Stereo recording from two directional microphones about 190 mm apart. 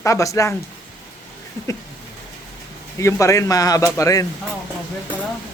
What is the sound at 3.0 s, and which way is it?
A man's voice, 15° left (ahead or behind).